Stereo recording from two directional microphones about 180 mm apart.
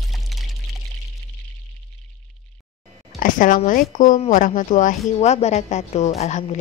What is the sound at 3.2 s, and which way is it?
A woman's voice, 45° left (ahead or behind).